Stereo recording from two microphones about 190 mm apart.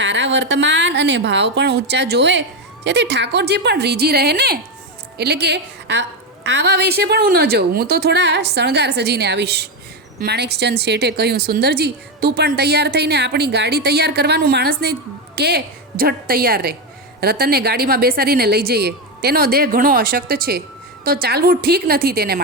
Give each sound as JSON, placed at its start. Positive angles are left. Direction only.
{"t": 0.0, "sound": "a woman's voice", "side_deg": -70}